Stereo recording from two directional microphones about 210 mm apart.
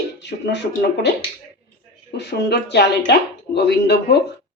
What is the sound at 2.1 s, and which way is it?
Speech, 55° left (ahead or behind).